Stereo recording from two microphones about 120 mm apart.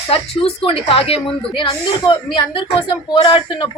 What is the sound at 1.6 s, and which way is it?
Speech, 40° left (ahead or behind).